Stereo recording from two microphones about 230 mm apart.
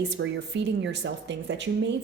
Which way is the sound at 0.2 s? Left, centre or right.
Right.